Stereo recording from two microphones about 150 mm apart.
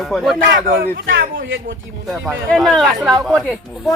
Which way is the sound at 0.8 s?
75° right (ahead or behind).